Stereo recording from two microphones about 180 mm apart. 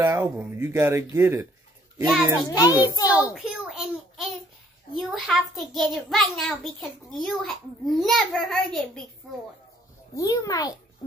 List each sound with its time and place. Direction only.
0.0 s speech: 15° right (ahead or behind)
2.0 s a child's voice: centre (ahead or behind)
2.8 s a child's voice: 20° left (ahead or behind)
3.3 s a child's voice: centre (ahead or behind)
10.1 s a child's voice: 20° left (ahead or behind)